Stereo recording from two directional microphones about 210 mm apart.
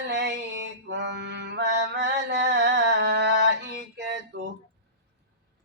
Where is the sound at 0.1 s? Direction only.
55° right (ahead or behind).